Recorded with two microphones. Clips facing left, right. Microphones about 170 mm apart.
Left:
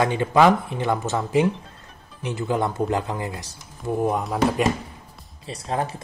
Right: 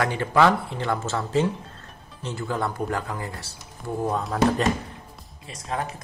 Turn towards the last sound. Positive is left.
turn(degrees=30)  # may be behind; listen again after turning